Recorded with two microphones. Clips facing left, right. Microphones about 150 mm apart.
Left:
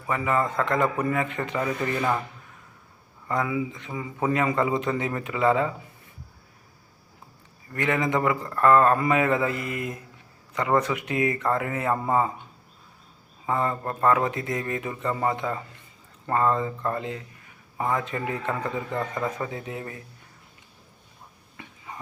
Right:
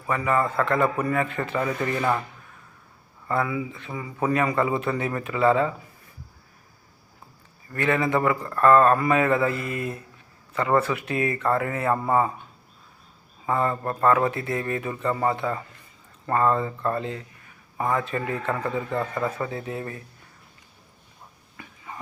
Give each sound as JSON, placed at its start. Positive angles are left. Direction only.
{"t": 0.1, "sound": "speech", "side_deg": 20}
{"t": 3.2, "sound": "speech", "side_deg": 20}
{"t": 7.7, "sound": "speech", "side_deg": 20}
{"t": 13.4, "sound": "speech", "side_deg": 20}
{"t": 21.6, "sound": "a sound", "side_deg": 25}